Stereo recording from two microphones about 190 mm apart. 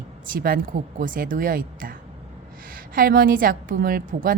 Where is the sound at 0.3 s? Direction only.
50° right (ahead or behind).